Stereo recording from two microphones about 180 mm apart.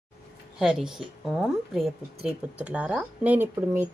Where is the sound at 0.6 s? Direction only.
5° right (ahead or behind).